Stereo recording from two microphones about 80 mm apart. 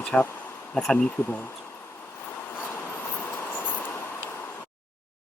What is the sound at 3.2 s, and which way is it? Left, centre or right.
Train, left.